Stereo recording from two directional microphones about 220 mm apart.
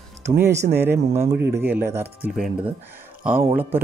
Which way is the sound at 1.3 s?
50° right (ahead or behind).